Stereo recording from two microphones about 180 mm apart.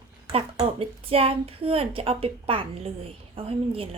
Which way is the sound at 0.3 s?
30° right (ahead or behind).